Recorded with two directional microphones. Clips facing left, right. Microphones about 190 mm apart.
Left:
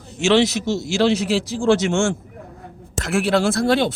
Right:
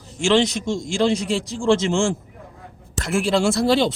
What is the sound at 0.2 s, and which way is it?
Speech, 5° left (ahead or behind).